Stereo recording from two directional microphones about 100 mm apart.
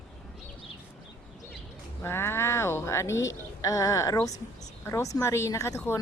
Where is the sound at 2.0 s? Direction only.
25° left (ahead or behind).